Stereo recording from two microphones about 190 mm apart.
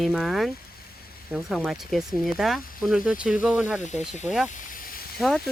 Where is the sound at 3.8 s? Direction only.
40° left (ahead or behind).